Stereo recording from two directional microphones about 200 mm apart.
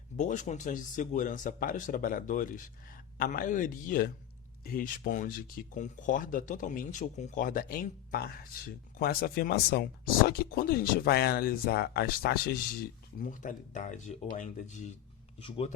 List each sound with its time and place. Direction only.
0.2 s speech: 35° left (ahead or behind)